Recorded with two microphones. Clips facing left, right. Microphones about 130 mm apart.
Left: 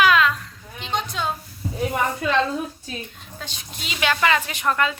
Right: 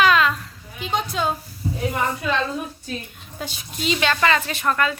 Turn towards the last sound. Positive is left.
turn(degrees=20)  # may be behind; listen again after turning